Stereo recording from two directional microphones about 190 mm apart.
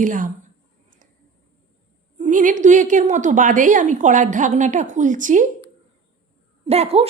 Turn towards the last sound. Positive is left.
turn(degrees=-35)  # may be behind; listen again after turning